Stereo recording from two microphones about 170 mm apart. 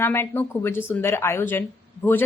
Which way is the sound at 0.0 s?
15° left (ahead or behind).